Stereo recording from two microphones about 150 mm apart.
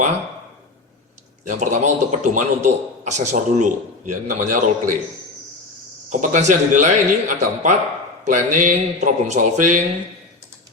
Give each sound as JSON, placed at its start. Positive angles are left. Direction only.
{"t": 1.5, "sound": "a man's voice", "side_deg": -55}
{"t": 6.1, "sound": "a man's voice", "side_deg": -55}